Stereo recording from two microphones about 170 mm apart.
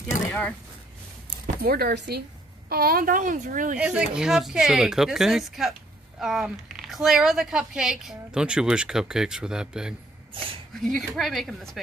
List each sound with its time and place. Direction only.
0.3 s speech: 10° left (ahead or behind)
1.6 s a woman's voice: 65° right (ahead or behind)
3.7 s speech: 5° right (ahead or behind)